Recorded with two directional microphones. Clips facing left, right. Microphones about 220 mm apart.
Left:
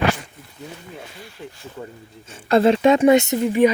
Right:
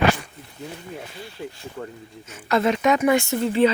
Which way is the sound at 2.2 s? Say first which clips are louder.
Left 5 dB; 30° left (ahead or behind).